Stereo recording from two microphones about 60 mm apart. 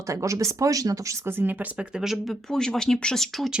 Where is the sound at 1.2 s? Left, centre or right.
Right.